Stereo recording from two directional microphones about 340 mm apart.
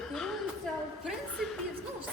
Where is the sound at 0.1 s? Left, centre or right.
Centre.